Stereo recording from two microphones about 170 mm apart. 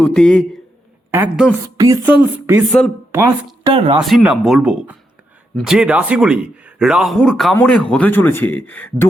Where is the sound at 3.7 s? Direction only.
35° right (ahead or behind).